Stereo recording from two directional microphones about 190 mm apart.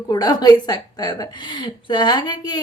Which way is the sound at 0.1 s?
20° left (ahead or behind).